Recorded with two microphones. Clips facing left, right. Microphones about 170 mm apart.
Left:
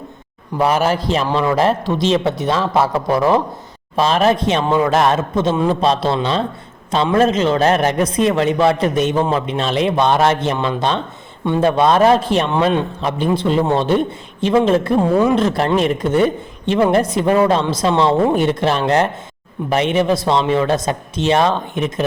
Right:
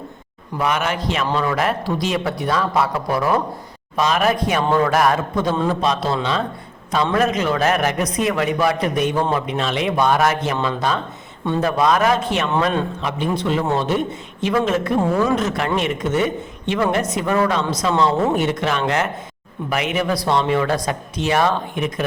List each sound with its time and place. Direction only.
0.6 s a man's voice: 30° left (ahead or behind)
12.5 s a man's voice: 20° left (ahead or behind)
13.0 s speech: 35° left (ahead or behind)
15.1 s speech: 20° left (ahead or behind)
15.4 s a man's voice: 35° left (ahead or behind)